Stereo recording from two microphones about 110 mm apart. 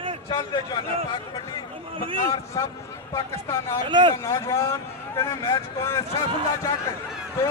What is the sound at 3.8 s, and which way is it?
Speech, 45° right (ahead or behind).